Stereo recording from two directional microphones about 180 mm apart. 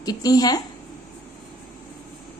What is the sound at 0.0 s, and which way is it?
Speech, 20° left (ahead or behind).